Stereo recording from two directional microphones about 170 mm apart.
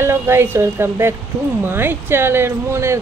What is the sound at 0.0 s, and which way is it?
Speech, 15° right (ahead or behind).